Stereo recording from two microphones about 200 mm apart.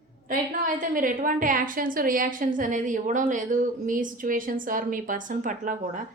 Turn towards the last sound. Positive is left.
turn(degrees=-40)  # may be behind; listen again after turning